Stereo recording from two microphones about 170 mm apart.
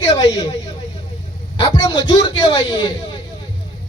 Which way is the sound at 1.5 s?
25° left (ahead or behind).